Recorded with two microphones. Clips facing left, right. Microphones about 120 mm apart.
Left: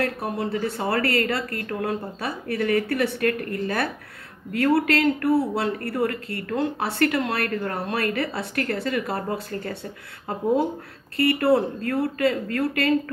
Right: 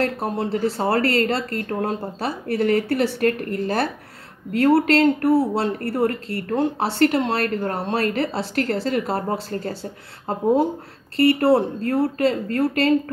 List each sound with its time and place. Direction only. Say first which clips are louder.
0.0 s speech: right 3 dB; 30° right (ahead or behind)
11.1 s speech: right 3 dB; 30° right (ahead or behind)